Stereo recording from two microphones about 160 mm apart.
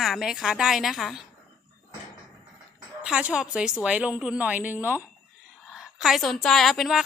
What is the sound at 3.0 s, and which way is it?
A woman's voice, 5° right (ahead or behind).